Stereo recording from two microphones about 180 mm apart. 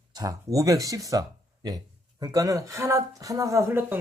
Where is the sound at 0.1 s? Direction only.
20° right (ahead or behind).